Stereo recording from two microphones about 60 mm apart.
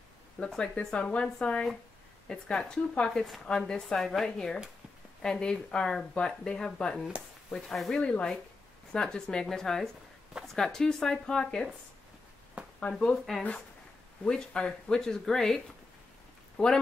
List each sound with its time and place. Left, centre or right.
0.5 s speech: centre
8.0 s speech: centre
12.6 s a sound: centre
13.0 s speech: centre